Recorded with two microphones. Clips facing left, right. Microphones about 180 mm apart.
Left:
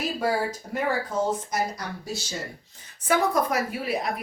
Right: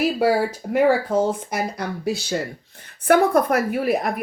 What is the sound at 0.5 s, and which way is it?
Speech, 55° right (ahead or behind).